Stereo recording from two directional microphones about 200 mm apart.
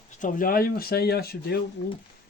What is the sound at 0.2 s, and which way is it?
Speech, 40° left (ahead or behind).